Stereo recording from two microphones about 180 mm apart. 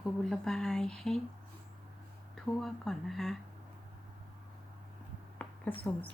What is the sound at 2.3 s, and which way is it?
A woman's voice, centre (ahead or behind).